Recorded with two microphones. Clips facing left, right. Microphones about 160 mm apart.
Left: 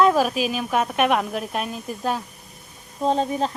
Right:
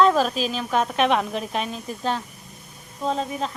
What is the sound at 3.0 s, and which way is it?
Speech, 35° left (ahead or behind).